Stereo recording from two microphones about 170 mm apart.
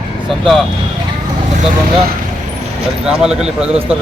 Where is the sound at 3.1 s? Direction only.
5° right (ahead or behind).